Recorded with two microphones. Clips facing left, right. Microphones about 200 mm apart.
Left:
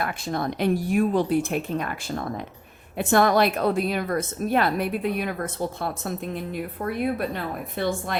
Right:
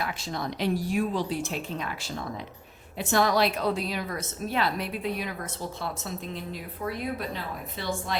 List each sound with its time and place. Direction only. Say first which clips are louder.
0.0 s a woman's voice: left 5 dB; 55° left (ahead or behind)